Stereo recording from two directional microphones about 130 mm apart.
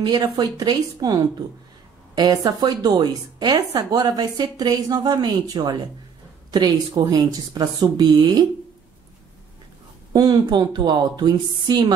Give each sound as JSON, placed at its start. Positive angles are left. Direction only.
{"t": 0.0, "sound": "a woman's voice", "side_deg": -35}
{"t": 10.1, "sound": "a woman's voice", "side_deg": -30}